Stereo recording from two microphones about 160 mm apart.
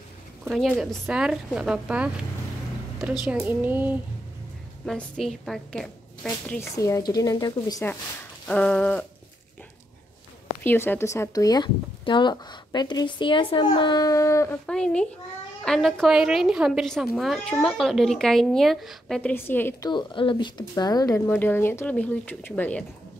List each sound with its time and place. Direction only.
0.5 s a woman's voice: centre (ahead or behind)
3.3 s speech: 10° right (ahead or behind)
4.8 s a woman's voice: 5° left (ahead or behind)
6.8 s speech: 20° left (ahead or behind)
8.5 s speech: 5° left (ahead or behind)
10.6 s speech: 10° left (ahead or behind)
14.7 s a woman's voice: 5° left (ahead or behind)
19.3 s speech: 15° left (ahead or behind)
19.9 s speech: 30° left (ahead or behind); by 22.8 s 10° left (ahead or behind)